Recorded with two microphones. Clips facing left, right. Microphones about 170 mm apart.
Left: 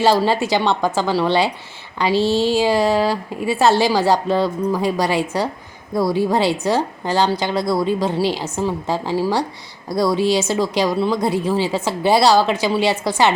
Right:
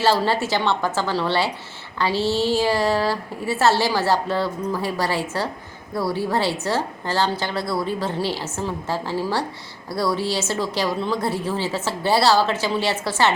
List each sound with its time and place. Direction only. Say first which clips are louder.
0.0 s a woman's voice: left 4 dB; 15° left (ahead or behind)